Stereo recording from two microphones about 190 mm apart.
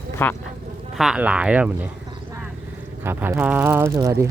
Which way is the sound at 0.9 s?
5° right (ahead or behind).